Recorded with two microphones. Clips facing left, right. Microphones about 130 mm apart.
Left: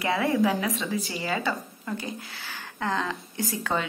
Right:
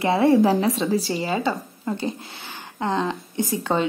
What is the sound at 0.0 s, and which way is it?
Speech, 25° right (ahead or behind).